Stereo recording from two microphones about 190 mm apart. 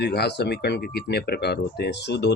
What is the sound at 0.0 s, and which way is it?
Speech, 60° left (ahead or behind).